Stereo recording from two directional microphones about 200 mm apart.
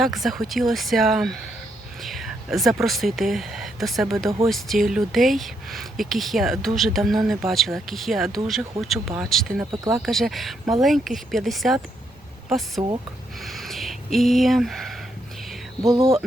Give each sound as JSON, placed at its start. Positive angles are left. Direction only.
{"t": 0.0, "sound": "speech", "side_deg": 0}
{"t": 2.0, "sound": "a sound", "side_deg": 0}
{"t": 2.8, "sound": "speech", "side_deg": 0}
{"t": 16.0, "sound": "speech", "side_deg": -30}